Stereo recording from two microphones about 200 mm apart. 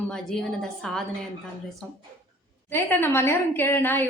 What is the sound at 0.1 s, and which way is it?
Speech, 5° left (ahead or behind).